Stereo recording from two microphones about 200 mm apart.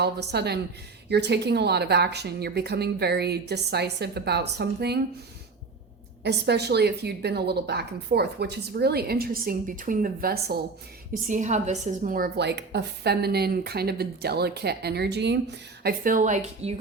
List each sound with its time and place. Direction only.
0.0 s a woman's voice: 55° right (ahead or behind)
6.2 s a woman's voice: 55° right (ahead or behind)
11.3 s a woman's voice: 35° right (ahead or behind)